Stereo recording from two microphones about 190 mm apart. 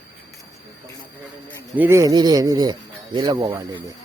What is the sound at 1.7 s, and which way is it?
Speech, 10° right (ahead or behind).